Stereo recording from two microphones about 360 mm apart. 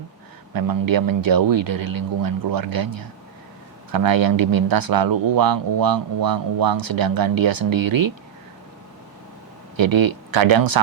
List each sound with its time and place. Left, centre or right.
0.5 s speech: right
9.7 s speech: right